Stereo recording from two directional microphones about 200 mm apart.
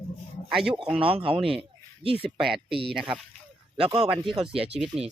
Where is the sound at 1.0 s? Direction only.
25° right (ahead or behind).